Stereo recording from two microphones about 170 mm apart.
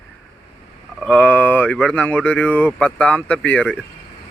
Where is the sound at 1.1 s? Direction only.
10° left (ahead or behind).